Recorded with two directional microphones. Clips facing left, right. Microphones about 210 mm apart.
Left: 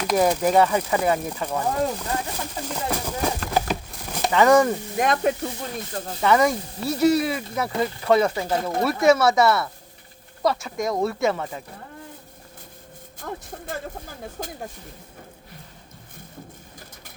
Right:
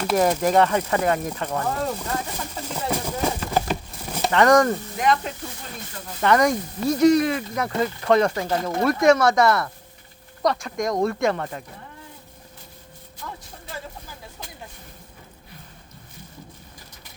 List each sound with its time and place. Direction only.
0.1 s speech: centre (ahead or behind)
2.6 s a sound: 5° right (ahead or behind)
4.9 s speech: 50° left (ahead or behind)
6.2 s speech: 5° left (ahead or behind)
13.1 s speech: 50° left (ahead or behind)